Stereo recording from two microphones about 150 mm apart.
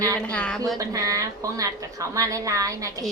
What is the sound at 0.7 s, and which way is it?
A woman's voice, 25° right (ahead or behind).